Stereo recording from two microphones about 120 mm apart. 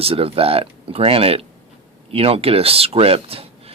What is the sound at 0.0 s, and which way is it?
Speech, 55° right (ahead or behind).